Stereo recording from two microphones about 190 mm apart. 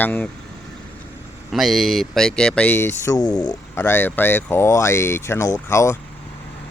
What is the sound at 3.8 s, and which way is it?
Speech, 10° left (ahead or behind).